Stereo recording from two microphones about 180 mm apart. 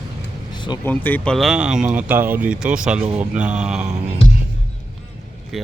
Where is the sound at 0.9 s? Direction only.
10° left (ahead or behind).